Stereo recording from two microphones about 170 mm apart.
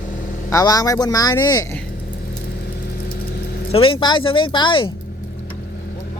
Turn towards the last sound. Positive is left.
turn(degrees=30)  # may be behind; listen again after turning